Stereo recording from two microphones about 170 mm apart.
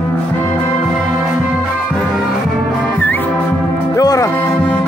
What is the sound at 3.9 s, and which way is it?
Music, 20° left (ahead or behind).